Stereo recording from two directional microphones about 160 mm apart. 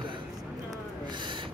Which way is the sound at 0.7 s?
30° right (ahead or behind).